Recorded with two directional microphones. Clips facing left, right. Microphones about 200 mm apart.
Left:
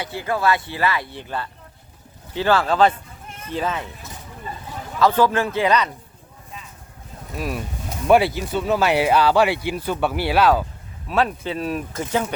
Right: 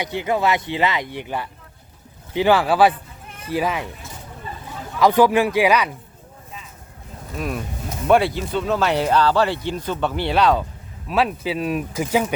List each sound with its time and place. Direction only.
0.0 s speech: 20° right (ahead or behind)
4.9 s speech: 15° right (ahead or behind)
7.3 s speech: 5° left (ahead or behind)